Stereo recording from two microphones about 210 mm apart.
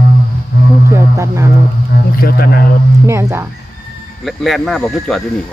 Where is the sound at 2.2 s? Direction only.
45° left (ahead or behind).